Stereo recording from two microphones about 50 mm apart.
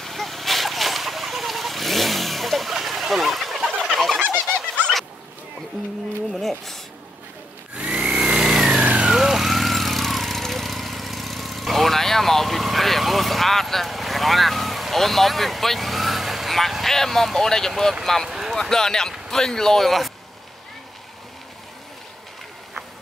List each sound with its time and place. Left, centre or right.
0.0 s a sound: centre
3.9 s bird: centre
4.3 s bird: centre
7.7 s a sound: right
8.6 s vehicle: right
9.1 s vehicle: centre
17.4 s speech: centre